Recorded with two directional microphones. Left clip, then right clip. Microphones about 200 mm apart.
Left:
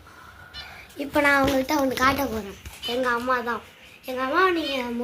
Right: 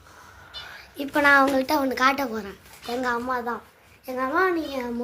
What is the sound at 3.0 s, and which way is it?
A woman's voice, 30° right (ahead or behind).